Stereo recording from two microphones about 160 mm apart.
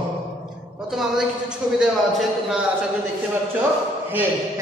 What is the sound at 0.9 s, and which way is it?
A man's voice, centre (ahead or behind).